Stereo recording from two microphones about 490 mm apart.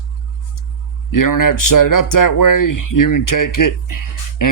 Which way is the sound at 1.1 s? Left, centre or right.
Left.